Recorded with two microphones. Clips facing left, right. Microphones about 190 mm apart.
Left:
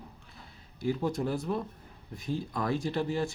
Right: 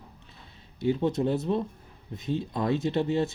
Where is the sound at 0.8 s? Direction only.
25° right (ahead or behind).